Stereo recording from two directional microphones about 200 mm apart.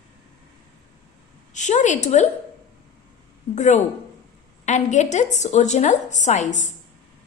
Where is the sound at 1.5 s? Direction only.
35° left (ahead or behind).